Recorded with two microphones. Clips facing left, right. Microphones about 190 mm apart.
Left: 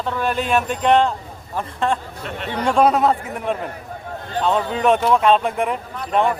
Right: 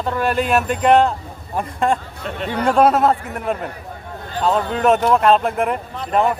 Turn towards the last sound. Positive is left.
turn(degrees=0)  # may be behind; listen again after turning